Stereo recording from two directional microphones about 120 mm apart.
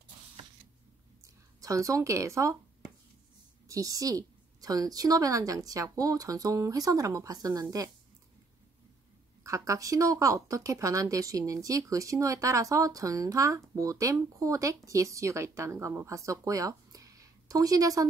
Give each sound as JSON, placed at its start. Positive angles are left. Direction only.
{"t": 1.2, "sound": "speech", "side_deg": -25}
{"t": 3.6, "sound": "speech", "side_deg": -30}
{"t": 9.4, "sound": "speech", "side_deg": -25}